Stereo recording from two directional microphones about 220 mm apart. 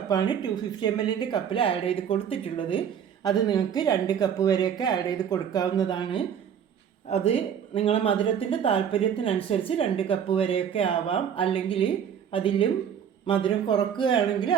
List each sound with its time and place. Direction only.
0.1 s speech: 20° left (ahead or behind)